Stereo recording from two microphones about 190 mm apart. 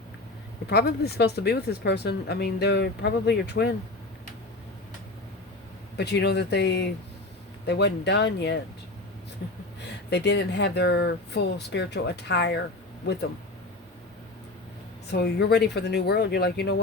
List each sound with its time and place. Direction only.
0.7 s speech: 55° left (ahead or behind)
6.0 s speech: 60° left (ahead or behind)
9.8 s speech: 60° left (ahead or behind)
15.1 s speech: 60° left (ahead or behind)